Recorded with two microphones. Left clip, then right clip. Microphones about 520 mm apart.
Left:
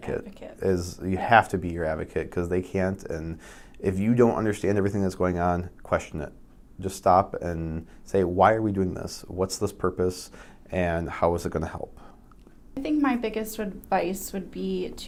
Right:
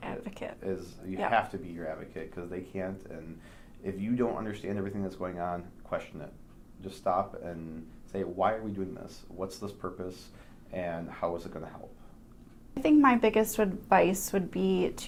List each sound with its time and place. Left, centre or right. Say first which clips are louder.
0.3 s a woman's voice: right 2 dB; centre
0.6 s speech: left 15 dB; left
12.8 s a woman's voice: right 3 dB; centre